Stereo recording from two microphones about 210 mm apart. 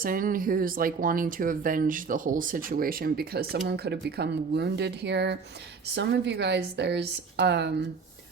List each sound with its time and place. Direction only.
0.0 s a woman's voice: 40° right (ahead or behind)